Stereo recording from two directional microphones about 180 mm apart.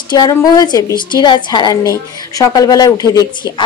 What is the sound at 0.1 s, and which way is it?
A woman's voice, 20° left (ahead or behind).